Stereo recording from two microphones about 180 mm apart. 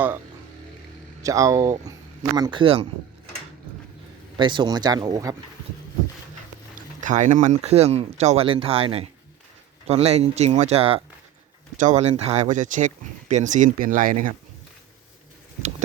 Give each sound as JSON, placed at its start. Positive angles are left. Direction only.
{"t": 1.2, "sound": "speech", "side_deg": -20}
{"t": 4.4, "sound": "speech", "side_deg": -25}
{"t": 7.0, "sound": "speech", "side_deg": -45}